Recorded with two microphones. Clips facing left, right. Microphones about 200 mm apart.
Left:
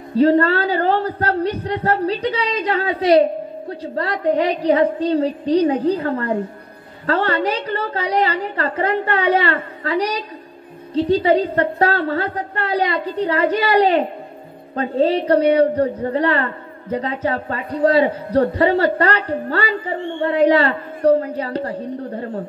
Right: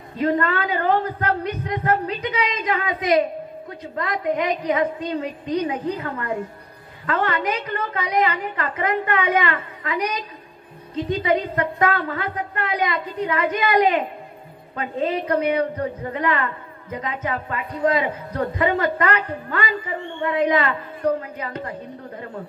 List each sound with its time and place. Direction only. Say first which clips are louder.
0.1 s a woman's voice: left 7 dB; 30° left (ahead or behind)